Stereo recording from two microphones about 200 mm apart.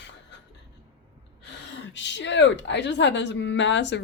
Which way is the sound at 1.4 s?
60° left (ahead or behind).